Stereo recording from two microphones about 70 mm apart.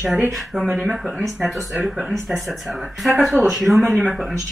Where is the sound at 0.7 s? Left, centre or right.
Centre.